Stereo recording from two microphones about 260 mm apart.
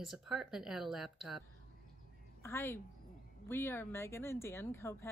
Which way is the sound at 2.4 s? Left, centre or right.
Centre.